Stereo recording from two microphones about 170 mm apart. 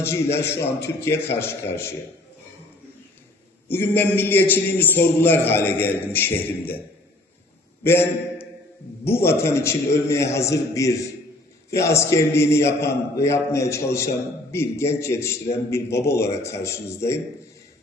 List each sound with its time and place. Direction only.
0.0 s a man's voice: 15° left (ahead or behind)
3.7 s a man's voice: 10° left (ahead or behind)
7.9 s a man's voice: 15° left (ahead or behind)